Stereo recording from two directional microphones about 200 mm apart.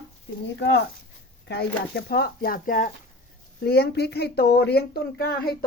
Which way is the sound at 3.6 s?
55° left (ahead or behind).